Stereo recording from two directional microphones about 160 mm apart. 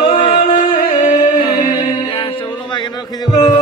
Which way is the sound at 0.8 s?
55° left (ahead or behind).